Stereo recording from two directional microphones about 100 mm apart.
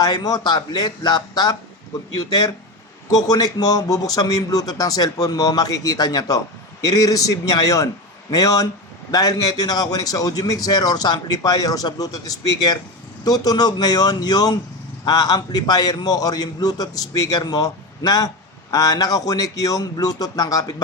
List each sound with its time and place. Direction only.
0.0 s a man's voice: 40° left (ahead or behind)